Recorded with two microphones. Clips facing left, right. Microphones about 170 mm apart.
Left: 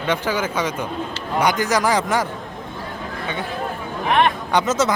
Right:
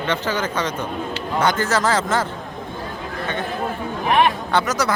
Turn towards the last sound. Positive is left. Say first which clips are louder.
# left 2 dB
turn(degrees=25)  # may be behind; listen again after turning